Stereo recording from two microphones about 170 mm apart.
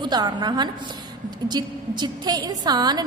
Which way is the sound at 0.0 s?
25° right (ahead or behind).